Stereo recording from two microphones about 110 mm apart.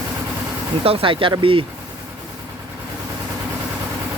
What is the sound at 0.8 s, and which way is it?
Speech, 60° right (ahead or behind).